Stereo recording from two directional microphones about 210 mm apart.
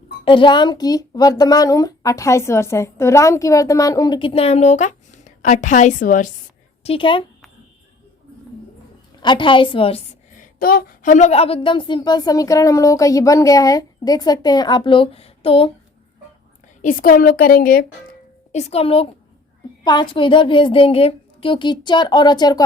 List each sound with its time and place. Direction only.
0.3 s speech: 25° left (ahead or behind); by 6.3 s 40° left (ahead or behind)
6.8 s a woman's voice: 25° left (ahead or behind)
9.2 s a woman's voice: 20° left (ahead or behind)
10.3 s a woman's voice: 40° left (ahead or behind)
16.8 s a woman's voice: 40° left (ahead or behind)
18.5 s a woman's voice: 30° left (ahead or behind)